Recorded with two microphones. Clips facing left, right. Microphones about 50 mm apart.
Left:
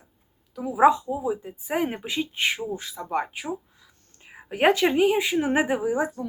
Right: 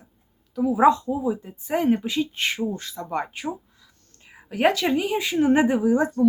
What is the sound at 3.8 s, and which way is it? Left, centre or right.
Speech, centre.